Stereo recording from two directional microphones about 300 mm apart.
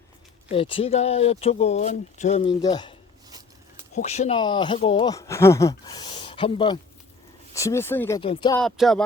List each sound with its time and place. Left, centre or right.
0.5 s speech: centre
3.9 s speech: left
8.6 s a sound: centre